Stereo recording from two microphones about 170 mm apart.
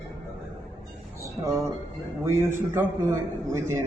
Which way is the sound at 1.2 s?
15° right (ahead or behind).